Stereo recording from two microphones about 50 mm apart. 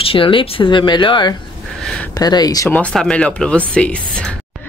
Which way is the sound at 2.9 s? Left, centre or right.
Centre.